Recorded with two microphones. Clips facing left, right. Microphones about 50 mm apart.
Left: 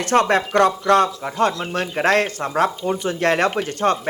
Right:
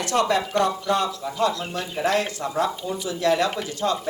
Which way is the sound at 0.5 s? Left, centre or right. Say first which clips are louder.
Left 7 dB; left.